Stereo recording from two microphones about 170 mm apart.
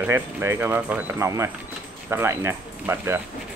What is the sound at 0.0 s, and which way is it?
Speech, 15° right (ahead or behind).